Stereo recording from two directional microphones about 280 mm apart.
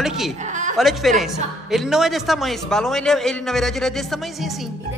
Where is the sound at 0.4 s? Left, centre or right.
Right.